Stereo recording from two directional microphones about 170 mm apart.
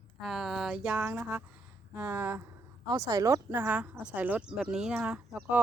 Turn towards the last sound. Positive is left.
turn(degrees=-5)  # may be behind; listen again after turning